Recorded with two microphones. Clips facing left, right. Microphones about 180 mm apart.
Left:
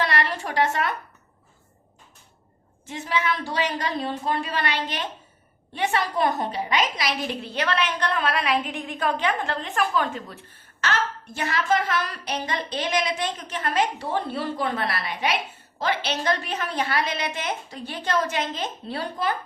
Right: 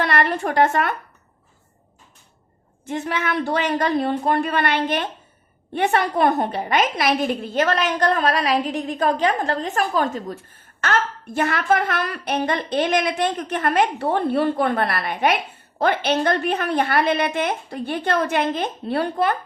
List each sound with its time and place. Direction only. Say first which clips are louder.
0.0 s a woman's voice: right 5 dB; 55° right (ahead or behind)
2.8 s a woman's voice: right 2 dB; 55° right (ahead or behind)
10.8 s a woman's voice: right 4 dB; 55° right (ahead or behind)